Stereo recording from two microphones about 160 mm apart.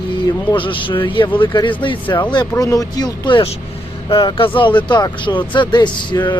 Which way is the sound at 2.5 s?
20° left (ahead or behind).